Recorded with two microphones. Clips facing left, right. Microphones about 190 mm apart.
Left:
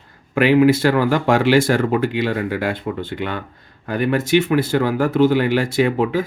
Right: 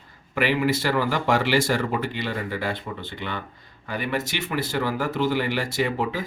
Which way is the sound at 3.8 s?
50° left (ahead or behind).